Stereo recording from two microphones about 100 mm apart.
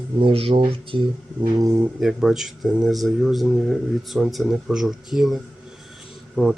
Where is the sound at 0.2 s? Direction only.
65° right (ahead or behind).